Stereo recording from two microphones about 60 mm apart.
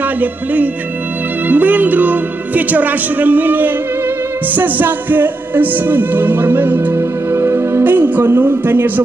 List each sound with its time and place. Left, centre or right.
0.2 s speech: right
4.6 s music: right
7.0 s music: right
7.8 s a woman's voice: right